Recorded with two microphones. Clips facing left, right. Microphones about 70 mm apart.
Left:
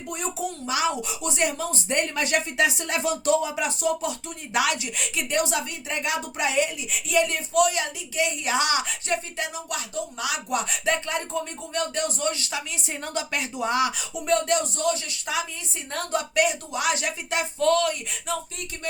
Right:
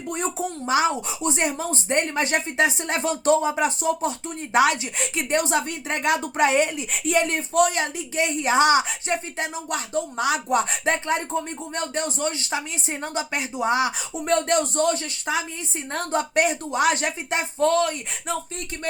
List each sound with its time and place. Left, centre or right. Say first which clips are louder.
0.1 s a woman's voice: right 3 dB; right
14.3 s a woman's voice: right 2 dB; right